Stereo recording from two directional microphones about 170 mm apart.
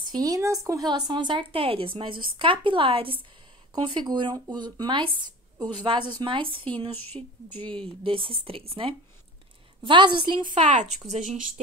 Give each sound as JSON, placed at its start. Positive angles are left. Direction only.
{"t": 0.0, "sound": "speech", "side_deg": -20}
{"t": 7.2, "sound": "speech", "side_deg": -15}
{"t": 7.6, "sound": "speech", "side_deg": -30}
{"t": 10.6, "sound": "speech", "side_deg": -45}